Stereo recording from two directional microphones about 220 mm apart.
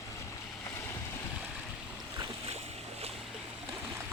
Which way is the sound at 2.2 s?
25° right (ahead or behind).